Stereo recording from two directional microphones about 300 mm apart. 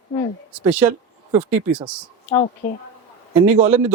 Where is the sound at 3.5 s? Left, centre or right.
Right.